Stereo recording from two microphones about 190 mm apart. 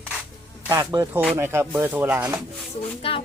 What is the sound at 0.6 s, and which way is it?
Speech, 20° right (ahead or behind).